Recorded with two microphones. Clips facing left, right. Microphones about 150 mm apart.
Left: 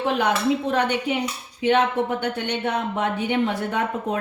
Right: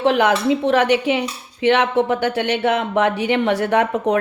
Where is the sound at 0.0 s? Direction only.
85° right.